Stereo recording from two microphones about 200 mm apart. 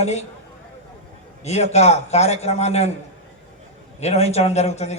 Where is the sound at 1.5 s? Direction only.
35° left (ahead or behind).